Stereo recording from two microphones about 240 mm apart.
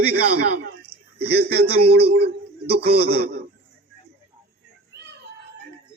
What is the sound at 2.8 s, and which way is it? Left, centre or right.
Speech, right.